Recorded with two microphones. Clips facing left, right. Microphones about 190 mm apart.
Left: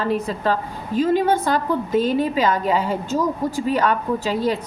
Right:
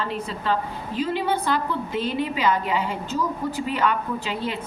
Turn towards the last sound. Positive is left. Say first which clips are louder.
# left 7 dB
turn(degrees=40)  # may be behind; listen again after turning